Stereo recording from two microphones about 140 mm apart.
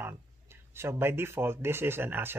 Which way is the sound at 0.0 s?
15° right (ahead or behind).